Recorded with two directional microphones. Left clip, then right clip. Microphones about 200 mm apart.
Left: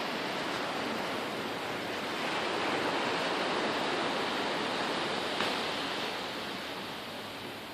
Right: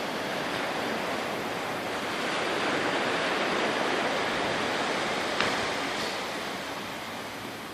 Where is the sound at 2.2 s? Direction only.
40° right (ahead or behind).